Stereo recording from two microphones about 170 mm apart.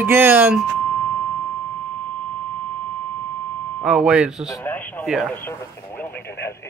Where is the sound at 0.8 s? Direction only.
10° left (ahead or behind).